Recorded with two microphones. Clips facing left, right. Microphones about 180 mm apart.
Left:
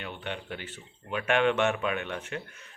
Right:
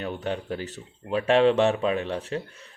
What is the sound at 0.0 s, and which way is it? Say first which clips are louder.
Speech: right 7 dB; 40° right (ahead or behind).